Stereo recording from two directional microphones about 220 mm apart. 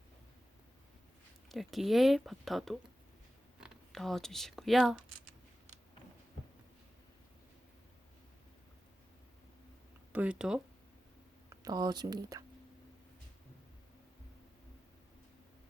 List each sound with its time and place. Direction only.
1.5 s speech: centre (ahead or behind)
10.1 s speech: 5° right (ahead or behind)
11.4 s speech: 15° right (ahead or behind)